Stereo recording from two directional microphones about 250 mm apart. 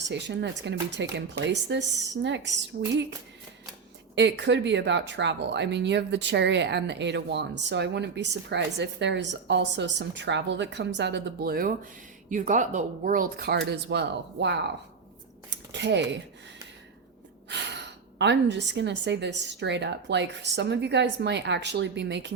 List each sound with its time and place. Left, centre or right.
0.1 s speech: right
4.1 s speech: right
15.4 s scissors: right
17.5 s speech: right